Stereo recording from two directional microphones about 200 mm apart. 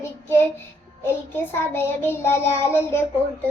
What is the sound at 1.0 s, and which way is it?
A child's voice, 10° left (ahead or behind).